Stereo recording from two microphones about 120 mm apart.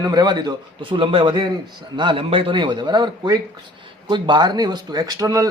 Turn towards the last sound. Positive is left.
turn(degrees=-30)  # may be behind; listen again after turning